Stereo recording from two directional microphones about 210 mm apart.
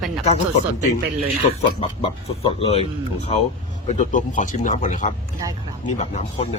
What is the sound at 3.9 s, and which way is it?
Speech, 40° left (ahead or behind).